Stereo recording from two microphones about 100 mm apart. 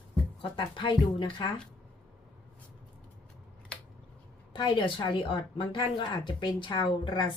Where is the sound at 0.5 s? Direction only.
50° left (ahead or behind).